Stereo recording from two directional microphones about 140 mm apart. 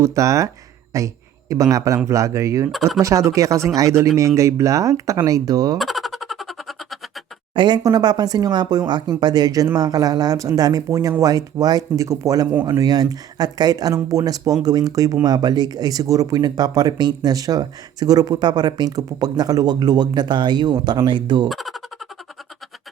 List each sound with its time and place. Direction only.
0.0 s a man's voice: 25° right (ahead or behind)
2.7 s speech: centre (ahead or behind)
3.0 s speech: 20° right (ahead or behind)
5.7 s boing: centre (ahead or behind)
7.5 s speech: 30° right (ahead or behind)
21.5 s speech: centre (ahead or behind)